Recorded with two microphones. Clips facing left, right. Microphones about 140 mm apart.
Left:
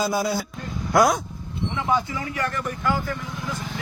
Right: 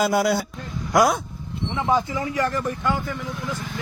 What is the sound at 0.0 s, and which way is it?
Speech, 70° right (ahead or behind).